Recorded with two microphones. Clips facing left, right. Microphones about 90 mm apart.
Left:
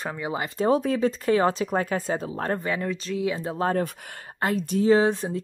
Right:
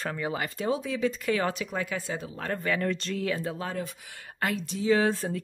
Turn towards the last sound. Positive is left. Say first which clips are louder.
# left 4 dB
turn(degrees=20)  # may be behind; listen again after turning